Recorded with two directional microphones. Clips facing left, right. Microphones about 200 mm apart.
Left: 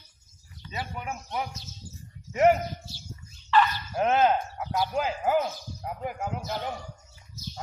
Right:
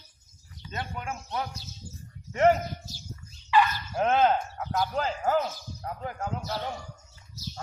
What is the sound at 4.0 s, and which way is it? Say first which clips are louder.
Speech: even; 5° left (ahead or behind).